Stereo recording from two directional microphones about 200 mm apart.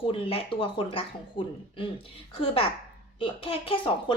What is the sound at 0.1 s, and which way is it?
A woman's voice, 25° left (ahead or behind).